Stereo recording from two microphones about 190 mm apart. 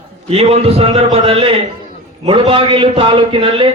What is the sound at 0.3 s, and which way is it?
A man's voice, 30° right (ahead or behind).